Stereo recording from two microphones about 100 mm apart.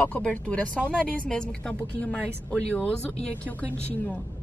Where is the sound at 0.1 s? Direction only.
15° left (ahead or behind).